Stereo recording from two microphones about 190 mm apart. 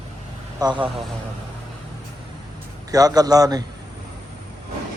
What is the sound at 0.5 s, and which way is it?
Speech, 20° right (ahead or behind).